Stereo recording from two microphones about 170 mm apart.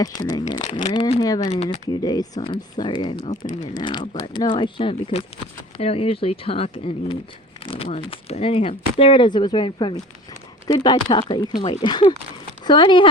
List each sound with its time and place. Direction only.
0.0 s speech: 25° left (ahead or behind); by 1.8 s 40° left (ahead or behind)
1.9 s speech: 25° left (ahead or behind)